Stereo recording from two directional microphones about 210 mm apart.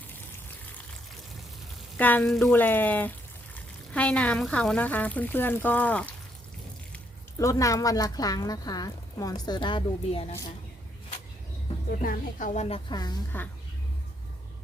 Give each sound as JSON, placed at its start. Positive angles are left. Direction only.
{"t": 2.0, "sound": "speech", "side_deg": 10}
{"t": 11.9, "sound": "a woman's voice", "side_deg": 40}